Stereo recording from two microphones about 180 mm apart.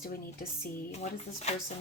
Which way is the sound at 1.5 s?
35° left (ahead or behind).